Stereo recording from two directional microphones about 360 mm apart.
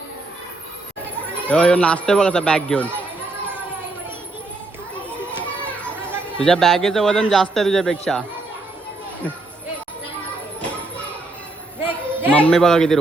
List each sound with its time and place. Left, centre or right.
1.5 s a man's voice: centre
6.4 s a man's voice: centre
11.9 s speech: centre